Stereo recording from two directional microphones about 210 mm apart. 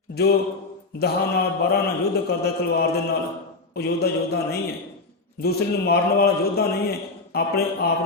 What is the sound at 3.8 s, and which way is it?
Speech, 50° left (ahead or behind).